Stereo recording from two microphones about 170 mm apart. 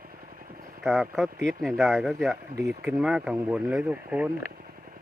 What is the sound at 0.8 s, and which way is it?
Speech, centre (ahead or behind).